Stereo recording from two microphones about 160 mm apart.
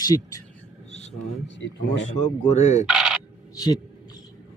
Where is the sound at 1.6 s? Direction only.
90° left.